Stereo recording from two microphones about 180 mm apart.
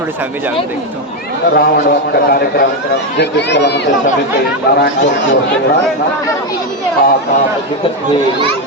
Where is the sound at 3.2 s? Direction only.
70° left (ahead or behind).